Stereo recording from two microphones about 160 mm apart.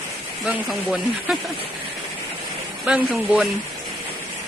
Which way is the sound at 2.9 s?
5° right (ahead or behind).